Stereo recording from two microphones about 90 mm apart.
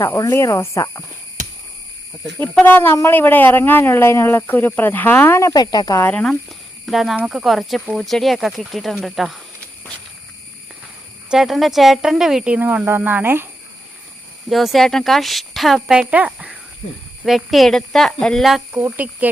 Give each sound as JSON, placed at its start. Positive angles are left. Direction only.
{"t": 0.2, "sound": "speech", "side_deg": 35}
{"t": 2.6, "sound": "speech", "side_deg": 20}
{"t": 5.5, "sound": "speech", "side_deg": 50}
{"t": 6.0, "sound": "speech", "side_deg": 20}
{"t": 6.8, "sound": "speech", "side_deg": 0}
{"t": 11.3, "sound": "speech", "side_deg": -5}
{"t": 12.5, "sound": "speech", "side_deg": -20}
{"t": 14.5, "sound": "speech", "side_deg": 0}
{"t": 16.0, "sound": "speech", "side_deg": -15}
{"t": 17.2, "sound": "speech", "side_deg": 0}
{"t": 18.7, "sound": "speech", "side_deg": -20}